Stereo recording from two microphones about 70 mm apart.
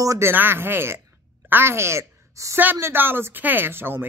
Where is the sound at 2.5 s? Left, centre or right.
Right.